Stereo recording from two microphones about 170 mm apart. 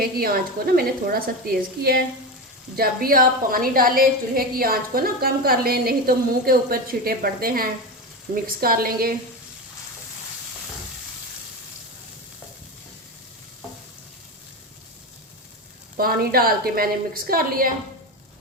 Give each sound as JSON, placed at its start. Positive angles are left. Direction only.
{"t": 0.0, "sound": "a woman's voice", "side_deg": -60}
{"t": 16.0, "sound": "a woman's voice", "side_deg": -60}